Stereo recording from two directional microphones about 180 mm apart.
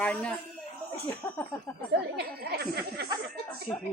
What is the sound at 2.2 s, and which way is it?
Speech, 65° right (ahead or behind).